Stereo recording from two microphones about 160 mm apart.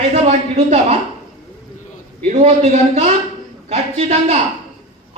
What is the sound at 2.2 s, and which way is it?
Speech, 45° right (ahead or behind).